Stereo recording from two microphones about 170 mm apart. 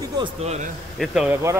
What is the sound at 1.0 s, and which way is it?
Speech, centre (ahead or behind).